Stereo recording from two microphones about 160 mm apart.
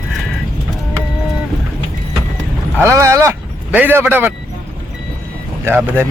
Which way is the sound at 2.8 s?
15° right (ahead or behind).